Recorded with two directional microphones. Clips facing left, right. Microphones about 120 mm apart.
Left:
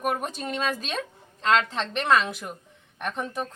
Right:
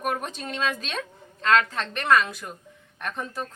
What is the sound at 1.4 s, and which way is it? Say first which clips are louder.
A woman's voice: right 1 dB; 20° left (ahead or behind).